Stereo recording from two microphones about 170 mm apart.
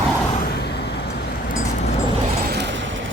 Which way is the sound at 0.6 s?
75° left (ahead or behind).